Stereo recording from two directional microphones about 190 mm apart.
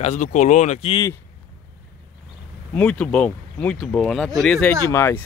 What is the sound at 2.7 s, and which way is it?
Speech, 5° left (ahead or behind).